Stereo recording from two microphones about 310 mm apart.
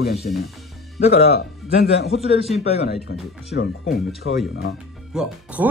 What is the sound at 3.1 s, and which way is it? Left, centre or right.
Speech, left.